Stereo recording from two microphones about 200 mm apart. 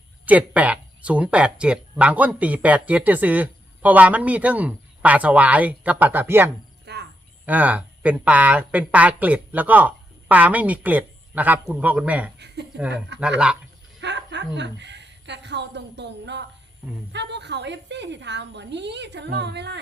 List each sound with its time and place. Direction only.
0.3 s speech: 5° right (ahead or behind)
6.8 s cricket: 55° right (ahead or behind)
7.4 s speech: 10° right (ahead or behind)
12.7 s a woman's voice: 60° right (ahead or behind)